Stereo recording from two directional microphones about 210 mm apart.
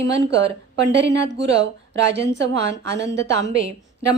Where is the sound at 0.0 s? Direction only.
55° right (ahead or behind).